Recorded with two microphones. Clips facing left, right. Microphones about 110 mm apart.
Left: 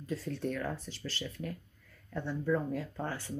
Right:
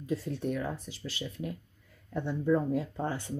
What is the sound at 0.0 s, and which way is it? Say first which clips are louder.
Speech: right 3 dB; 15° right (ahead or behind).